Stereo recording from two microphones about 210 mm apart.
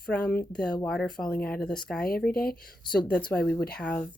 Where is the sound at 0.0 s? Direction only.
5° left (ahead or behind).